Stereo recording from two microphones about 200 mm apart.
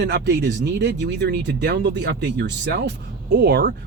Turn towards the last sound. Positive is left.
turn(degrees=-55)  # may be behind; listen again after turning